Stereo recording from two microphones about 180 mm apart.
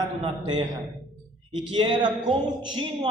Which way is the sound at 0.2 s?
25° right (ahead or behind).